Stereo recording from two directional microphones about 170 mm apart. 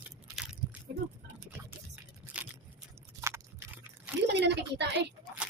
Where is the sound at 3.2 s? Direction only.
15° right (ahead or behind).